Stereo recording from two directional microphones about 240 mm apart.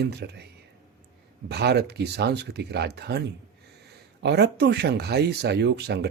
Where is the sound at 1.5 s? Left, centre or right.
Right.